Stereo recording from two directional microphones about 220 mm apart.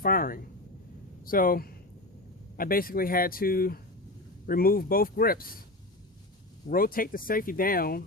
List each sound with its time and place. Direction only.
0.0 s speech: 40° left (ahead or behind)
6.7 s speech: 40° left (ahead or behind)